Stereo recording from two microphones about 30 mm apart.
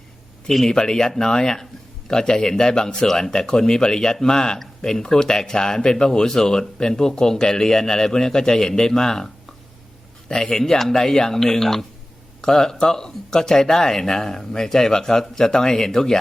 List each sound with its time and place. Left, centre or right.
0.4 s speech: centre